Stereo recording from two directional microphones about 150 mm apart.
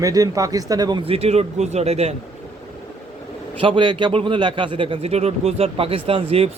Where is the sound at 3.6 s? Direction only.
35° right (ahead or behind).